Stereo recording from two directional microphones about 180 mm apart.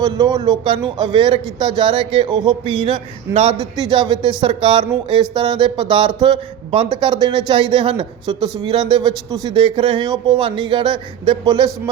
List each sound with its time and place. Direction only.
0.0 s speech: 20° right (ahead or behind)